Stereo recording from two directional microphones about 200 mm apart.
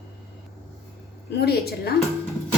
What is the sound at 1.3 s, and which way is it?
Speech, 55° left (ahead or behind).